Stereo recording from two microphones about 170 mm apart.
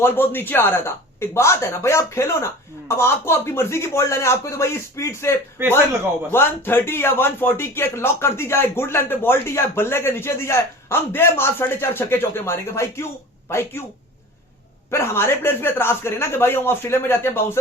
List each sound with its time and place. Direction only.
0.0 s a man's voice: 10° left (ahead or behind)
5.6 s a man's voice: 15° right (ahead or behind)
6.3 s a man's voice: 15° left (ahead or behind)
14.8 s a man's voice: 15° left (ahead or behind)